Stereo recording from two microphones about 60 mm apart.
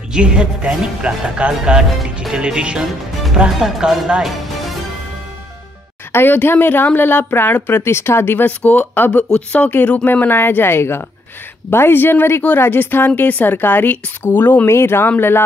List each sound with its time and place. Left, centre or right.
0.1 s speech: centre
6.1 s speech: left
10.0 s speech: left
14.7 s speech: left